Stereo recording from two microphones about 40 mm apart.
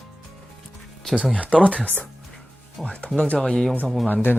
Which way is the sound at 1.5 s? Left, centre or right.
Left.